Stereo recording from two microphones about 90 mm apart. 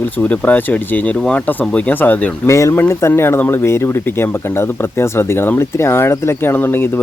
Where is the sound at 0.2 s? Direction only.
20° left (ahead or behind).